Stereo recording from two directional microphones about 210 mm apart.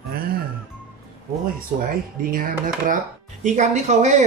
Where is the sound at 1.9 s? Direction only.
40° right (ahead or behind).